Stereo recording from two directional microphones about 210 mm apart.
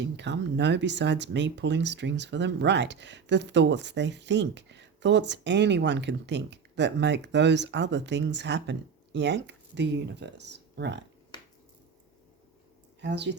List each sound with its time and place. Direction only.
0.0 s speech: 55° right (ahead or behind)
13.0 s speech: 55° right (ahead or behind)